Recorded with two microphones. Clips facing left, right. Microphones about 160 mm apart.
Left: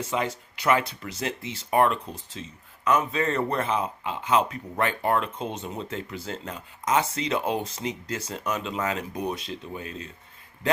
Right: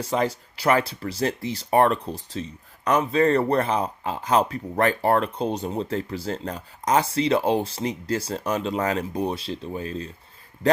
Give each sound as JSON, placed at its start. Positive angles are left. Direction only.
{"t": 0.0, "sound": "speech", "side_deg": -35}